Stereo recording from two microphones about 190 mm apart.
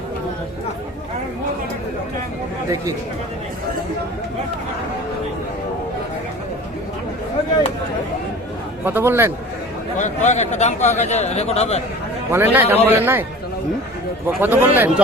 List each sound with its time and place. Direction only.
8.8 s a man's voice: 10° right (ahead or behind)
10.0 s speech: 40° left (ahead or behind)
12.3 s a man's voice: 10° right (ahead or behind)
14.3 s a man's voice: 10° right (ahead or behind)